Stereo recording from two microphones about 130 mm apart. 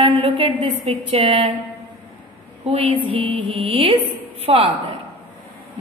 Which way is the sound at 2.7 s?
50° right (ahead or behind).